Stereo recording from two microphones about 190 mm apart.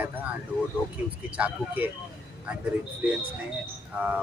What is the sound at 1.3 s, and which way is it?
Speech, 5° right (ahead or behind).